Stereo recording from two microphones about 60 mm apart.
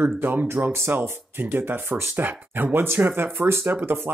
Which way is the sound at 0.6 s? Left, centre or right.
Right.